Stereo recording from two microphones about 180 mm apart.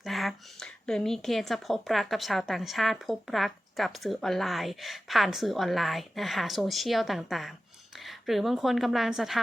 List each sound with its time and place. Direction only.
0.0 s speech: centre (ahead or behind)